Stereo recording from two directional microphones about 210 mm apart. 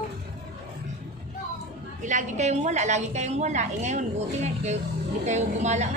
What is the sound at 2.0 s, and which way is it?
A woman's voice, 35° right (ahead or behind).